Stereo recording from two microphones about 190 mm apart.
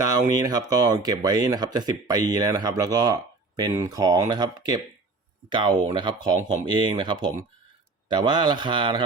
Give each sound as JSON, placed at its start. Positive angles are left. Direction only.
{"t": 0.3, "sound": "speech", "side_deg": -20}